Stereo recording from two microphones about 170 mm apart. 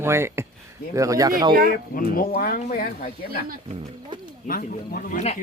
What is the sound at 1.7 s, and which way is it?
Speech, 55° left (ahead or behind).